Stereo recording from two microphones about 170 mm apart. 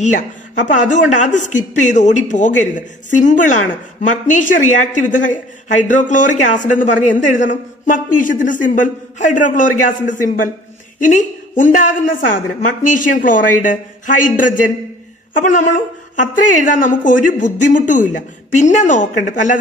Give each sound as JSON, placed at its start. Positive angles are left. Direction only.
{"t": 0.7, "sound": "a woman's voice", "side_deg": 45}